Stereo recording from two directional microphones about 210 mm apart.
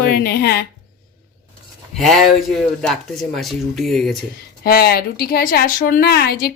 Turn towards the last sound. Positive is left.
turn(degrees=50)  # may be behind; listen again after turning